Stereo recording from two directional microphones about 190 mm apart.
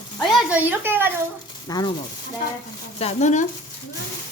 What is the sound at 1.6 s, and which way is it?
Speech, 20° left (ahead or behind).